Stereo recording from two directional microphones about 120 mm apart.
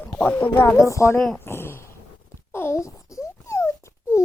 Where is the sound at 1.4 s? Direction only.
20° left (ahead or behind).